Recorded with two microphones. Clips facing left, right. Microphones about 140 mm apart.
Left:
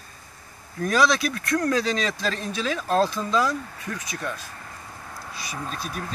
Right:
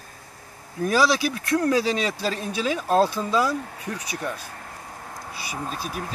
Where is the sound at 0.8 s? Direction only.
5° right (ahead or behind).